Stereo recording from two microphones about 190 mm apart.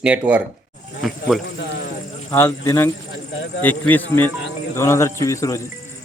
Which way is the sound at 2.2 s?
15° left (ahead or behind).